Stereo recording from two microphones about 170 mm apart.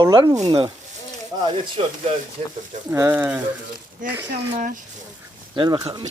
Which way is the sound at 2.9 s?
15° right (ahead or behind).